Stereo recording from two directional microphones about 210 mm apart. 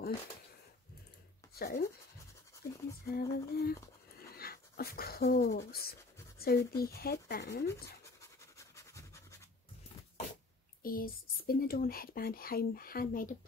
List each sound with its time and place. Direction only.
1.6 s speech: 45° left (ahead or behind)
7.6 s scratch: 15° left (ahead or behind)
10.8 s speech: 45° left (ahead or behind)